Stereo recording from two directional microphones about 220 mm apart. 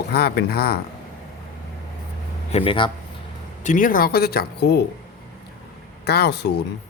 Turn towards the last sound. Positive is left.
turn(degrees=50)  # may be behind; listen again after turning